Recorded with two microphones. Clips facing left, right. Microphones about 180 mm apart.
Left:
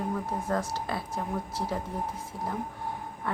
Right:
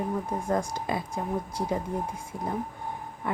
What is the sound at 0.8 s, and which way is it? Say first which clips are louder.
Speech: right 3 dB; 15° right (ahead or behind).